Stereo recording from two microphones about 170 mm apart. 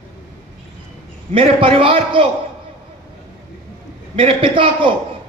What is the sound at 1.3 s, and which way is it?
Speech, 30° right (ahead or behind).